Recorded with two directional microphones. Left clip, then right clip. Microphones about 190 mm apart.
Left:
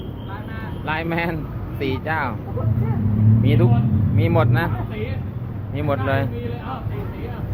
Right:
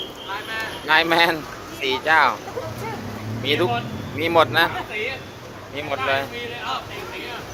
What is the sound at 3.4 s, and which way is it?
Speech, 20° right (ahead or behind).